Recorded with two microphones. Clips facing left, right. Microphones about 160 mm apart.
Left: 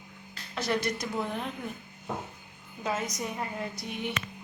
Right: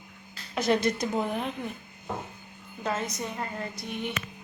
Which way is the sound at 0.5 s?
20° right (ahead or behind).